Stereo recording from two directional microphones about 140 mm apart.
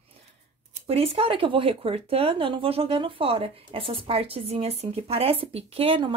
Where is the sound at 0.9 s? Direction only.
45° right (ahead or behind).